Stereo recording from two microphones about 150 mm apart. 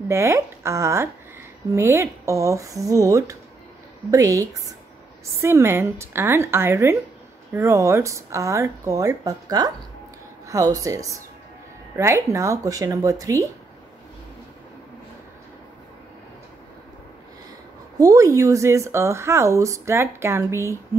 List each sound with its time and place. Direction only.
0.1 s a woman's voice: 20° right (ahead or behind)
17.9 s speech: 20° right (ahead or behind)